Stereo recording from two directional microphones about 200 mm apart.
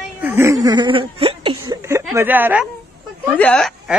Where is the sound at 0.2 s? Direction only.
10° right (ahead or behind); by 1.6 s 25° right (ahead or behind).